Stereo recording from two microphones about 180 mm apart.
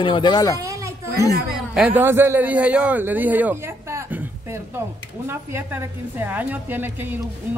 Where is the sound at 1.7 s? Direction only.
10° right (ahead or behind).